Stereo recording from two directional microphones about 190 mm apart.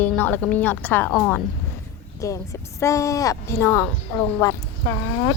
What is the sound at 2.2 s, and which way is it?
A woman's voice, 15° left (ahead or behind).